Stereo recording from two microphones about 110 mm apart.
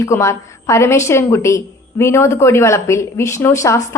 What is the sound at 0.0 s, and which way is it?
A woman's voice, 25° left (ahead or behind).